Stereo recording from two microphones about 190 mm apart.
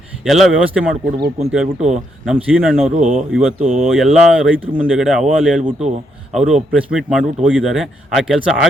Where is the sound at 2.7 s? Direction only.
35° right (ahead or behind).